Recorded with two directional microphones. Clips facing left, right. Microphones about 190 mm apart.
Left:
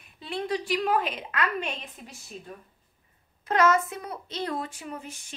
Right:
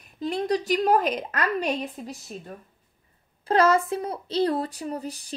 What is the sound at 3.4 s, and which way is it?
Speech, 30° right (ahead or behind).